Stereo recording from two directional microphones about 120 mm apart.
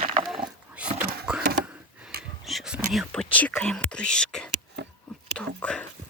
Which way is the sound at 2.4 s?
Centre (ahead or behind).